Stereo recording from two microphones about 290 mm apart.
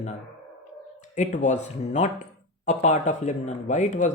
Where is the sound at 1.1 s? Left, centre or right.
Left.